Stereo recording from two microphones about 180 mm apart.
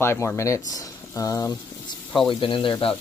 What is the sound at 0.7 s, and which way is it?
Speech, 20° left (ahead or behind).